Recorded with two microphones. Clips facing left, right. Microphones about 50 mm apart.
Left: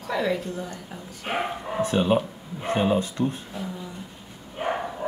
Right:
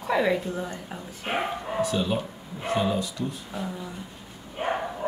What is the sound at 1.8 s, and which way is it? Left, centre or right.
Speech, left.